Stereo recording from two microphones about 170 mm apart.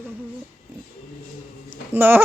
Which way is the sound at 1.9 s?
10° right (ahead or behind).